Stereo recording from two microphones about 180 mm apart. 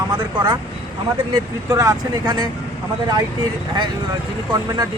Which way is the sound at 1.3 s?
20° right (ahead or behind).